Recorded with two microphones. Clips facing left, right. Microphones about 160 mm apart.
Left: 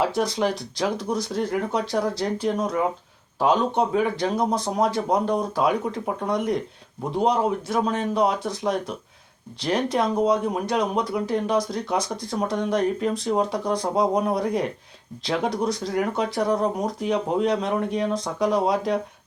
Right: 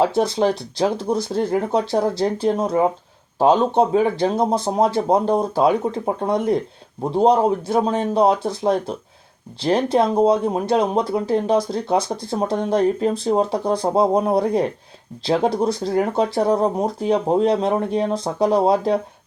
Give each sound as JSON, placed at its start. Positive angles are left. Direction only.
{"t": 0.0, "sound": "speech", "side_deg": -25}